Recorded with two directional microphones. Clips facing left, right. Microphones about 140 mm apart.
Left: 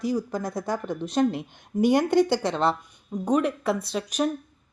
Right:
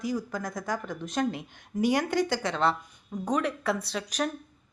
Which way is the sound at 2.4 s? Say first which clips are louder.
Left 3 dB; 20° left (ahead or behind).